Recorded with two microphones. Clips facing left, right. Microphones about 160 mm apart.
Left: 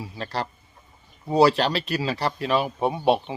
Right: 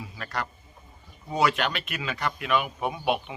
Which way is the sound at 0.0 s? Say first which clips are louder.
Left 4 dB; 30° left (ahead or behind).